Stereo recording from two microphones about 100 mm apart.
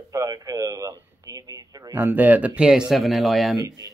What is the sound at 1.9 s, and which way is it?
Speech, 20° right (ahead or behind).